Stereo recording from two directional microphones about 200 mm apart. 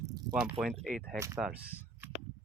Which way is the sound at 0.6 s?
Centre (ahead or behind).